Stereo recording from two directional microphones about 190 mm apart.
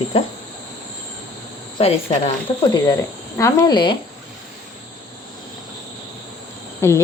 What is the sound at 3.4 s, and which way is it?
Speech, 20° left (ahead or behind).